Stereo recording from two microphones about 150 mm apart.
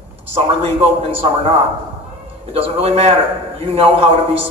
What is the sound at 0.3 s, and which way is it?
Speech, 40° right (ahead or behind).